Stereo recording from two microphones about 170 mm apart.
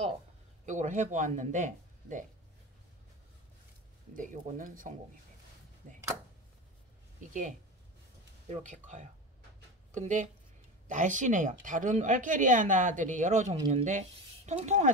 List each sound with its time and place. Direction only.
0.7 s a woman's voice: 45° right (ahead or behind)
4.1 s a woman's voice: 50° right (ahead or behind)
8.5 s a woman's voice: 45° right (ahead or behind)